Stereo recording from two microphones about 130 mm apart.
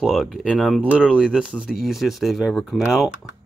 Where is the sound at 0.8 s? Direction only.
10° right (ahead or behind).